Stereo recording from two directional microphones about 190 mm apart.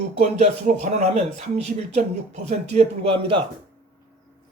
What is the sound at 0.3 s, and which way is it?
Speech, 40° right (ahead or behind).